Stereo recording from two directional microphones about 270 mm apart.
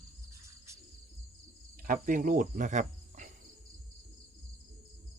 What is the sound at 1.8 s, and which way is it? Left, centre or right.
Cricket, right.